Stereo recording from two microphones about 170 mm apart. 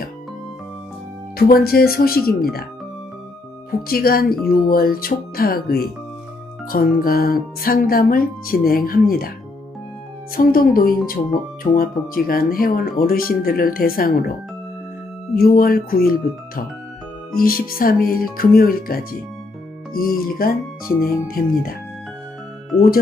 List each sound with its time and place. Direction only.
1.3 s speech: 65° left (ahead or behind)
3.8 s speech: 60° left (ahead or behind)
10.3 s speech: 60° left (ahead or behind)
15.3 s speech: 60° left (ahead or behind)